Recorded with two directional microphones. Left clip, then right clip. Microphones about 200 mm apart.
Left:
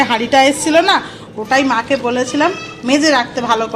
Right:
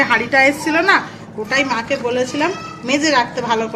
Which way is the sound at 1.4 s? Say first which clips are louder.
Left 4 dB; 25° left (ahead or behind).